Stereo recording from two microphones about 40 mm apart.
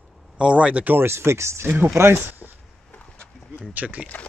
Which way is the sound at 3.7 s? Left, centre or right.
Right.